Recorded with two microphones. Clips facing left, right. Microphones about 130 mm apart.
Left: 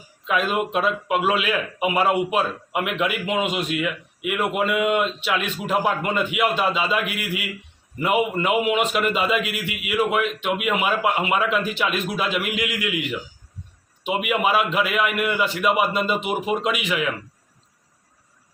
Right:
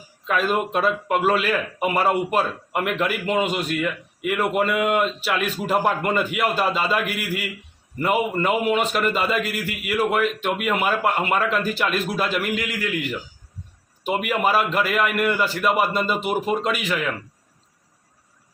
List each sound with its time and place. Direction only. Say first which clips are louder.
0.3 s a man's voice: right 1 dB; centre (ahead or behind)